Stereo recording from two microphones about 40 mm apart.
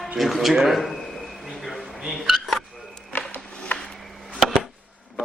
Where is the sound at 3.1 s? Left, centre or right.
Left.